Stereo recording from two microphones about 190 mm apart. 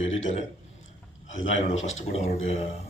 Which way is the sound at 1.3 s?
90° left.